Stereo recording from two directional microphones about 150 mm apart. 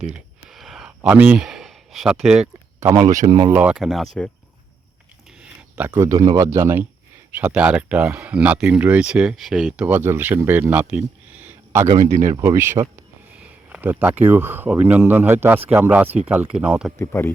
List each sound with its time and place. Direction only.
0.0 s a sound: 5° right (ahead or behind)
2.8 s speech: 50° right (ahead or behind)
3.2 s speech: 30° right (ahead or behind)
3.5 s speech: 10° right (ahead or behind)
5.4 s speech: 10° right (ahead or behind)
11.9 s speech: 50° right (ahead or behind)
12.2 s speech: 20° right (ahead or behind)
17.0 s speech: 15° left (ahead or behind)